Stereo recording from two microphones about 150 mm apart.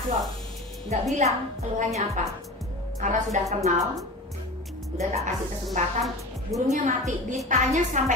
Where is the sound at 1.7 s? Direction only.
50° right (ahead or behind).